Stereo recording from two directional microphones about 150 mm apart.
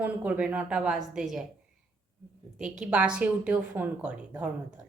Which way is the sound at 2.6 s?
5° right (ahead or behind).